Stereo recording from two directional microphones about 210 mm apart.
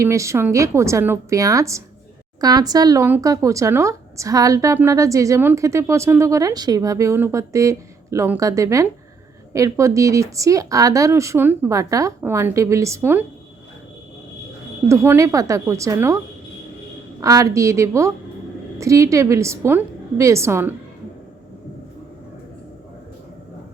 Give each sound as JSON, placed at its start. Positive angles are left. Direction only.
{"t": 0.0, "sound": "speech", "side_deg": -15}
{"t": 14.8, "sound": "speech", "side_deg": -15}